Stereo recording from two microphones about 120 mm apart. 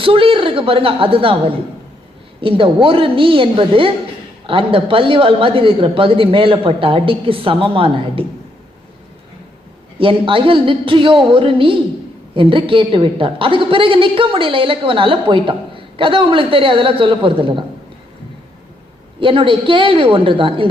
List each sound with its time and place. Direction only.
0.0 s a woman's voice: 50° right (ahead or behind)
10.0 s a woman's voice: 45° right (ahead or behind)
19.2 s a woman's voice: 45° right (ahead or behind)